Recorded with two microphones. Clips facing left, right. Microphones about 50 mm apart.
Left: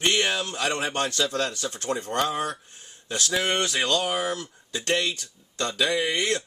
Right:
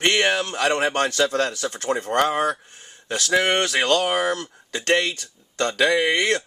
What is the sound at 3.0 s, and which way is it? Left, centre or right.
Speech, right.